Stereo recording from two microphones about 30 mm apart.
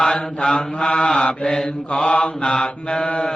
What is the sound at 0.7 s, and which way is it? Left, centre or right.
Chant, left.